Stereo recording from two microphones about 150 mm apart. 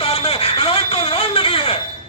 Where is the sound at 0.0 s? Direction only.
40° left (ahead or behind).